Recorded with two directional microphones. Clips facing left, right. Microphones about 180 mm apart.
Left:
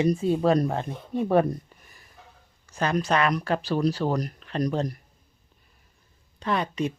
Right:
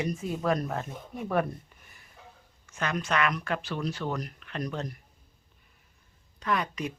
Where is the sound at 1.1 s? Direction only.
30° left (ahead or behind).